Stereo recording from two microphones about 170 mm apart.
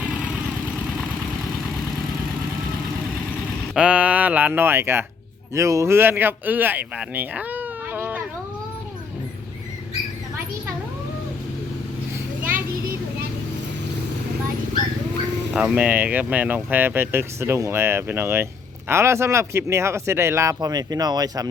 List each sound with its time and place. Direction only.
3.8 s speech: 10° right (ahead or behind)
15.5 s speech: 5° right (ahead or behind); by 21.4 s 25° right (ahead or behind)